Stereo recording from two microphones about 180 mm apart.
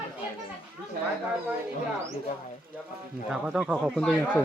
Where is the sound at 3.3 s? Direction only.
5° right (ahead or behind).